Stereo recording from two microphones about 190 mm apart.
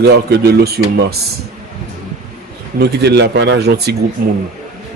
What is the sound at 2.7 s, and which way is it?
Speech, 60° right (ahead or behind).